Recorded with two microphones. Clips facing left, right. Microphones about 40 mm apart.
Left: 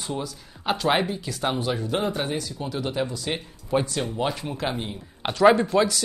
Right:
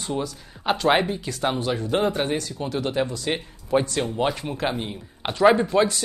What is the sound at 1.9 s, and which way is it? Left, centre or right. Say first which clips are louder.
Speech: right 6 dB; centre.